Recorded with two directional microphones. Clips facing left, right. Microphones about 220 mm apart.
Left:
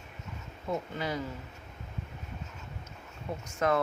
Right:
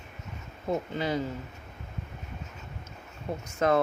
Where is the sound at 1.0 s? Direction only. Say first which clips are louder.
Right 5 dB; 25° right (ahead or behind).